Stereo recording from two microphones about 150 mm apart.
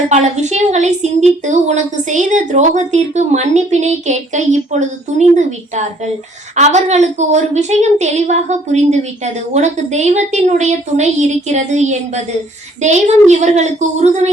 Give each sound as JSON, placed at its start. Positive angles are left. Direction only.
{"t": 0.1, "sound": "a woman's voice", "side_deg": -50}